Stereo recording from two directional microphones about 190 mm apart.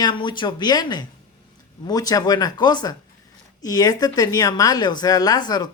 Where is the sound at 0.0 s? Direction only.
25° left (ahead or behind).